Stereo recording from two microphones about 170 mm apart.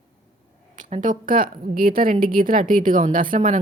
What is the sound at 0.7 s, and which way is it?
A woman's voice, 45° right (ahead or behind).